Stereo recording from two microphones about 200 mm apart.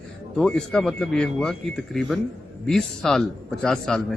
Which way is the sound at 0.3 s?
5° left (ahead or behind).